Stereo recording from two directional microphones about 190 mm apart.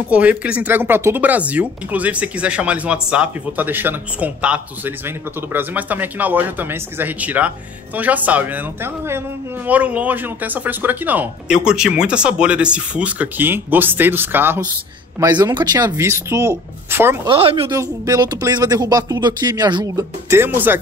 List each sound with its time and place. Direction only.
0.1 s speech: 5° right (ahead or behind)
17.3 s speech: 30° right (ahead or behind)
17.7 s speech: 20° right (ahead or behind)